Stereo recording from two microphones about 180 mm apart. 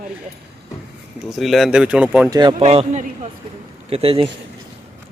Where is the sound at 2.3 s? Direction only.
20° right (ahead or behind).